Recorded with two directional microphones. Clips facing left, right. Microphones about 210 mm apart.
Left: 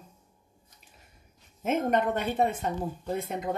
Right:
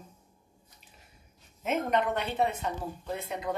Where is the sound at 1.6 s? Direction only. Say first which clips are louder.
Left 2 dB; 45° left (ahead or behind).